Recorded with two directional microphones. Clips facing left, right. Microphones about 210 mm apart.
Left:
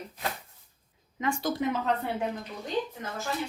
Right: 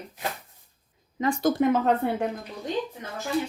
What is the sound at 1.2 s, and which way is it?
Speech, 35° right (ahead or behind).